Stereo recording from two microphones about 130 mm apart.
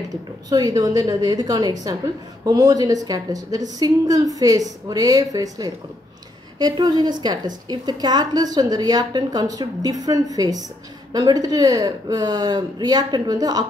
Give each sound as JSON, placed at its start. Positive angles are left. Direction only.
{"t": 0.1, "sound": "a woman's voice", "side_deg": -30}